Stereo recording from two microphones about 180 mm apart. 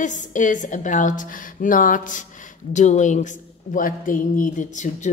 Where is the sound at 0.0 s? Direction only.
45° left (ahead or behind).